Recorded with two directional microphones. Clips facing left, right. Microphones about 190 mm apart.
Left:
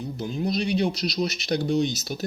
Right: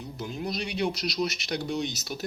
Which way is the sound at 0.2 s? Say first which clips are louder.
Left 6 dB; 30° left (ahead or behind).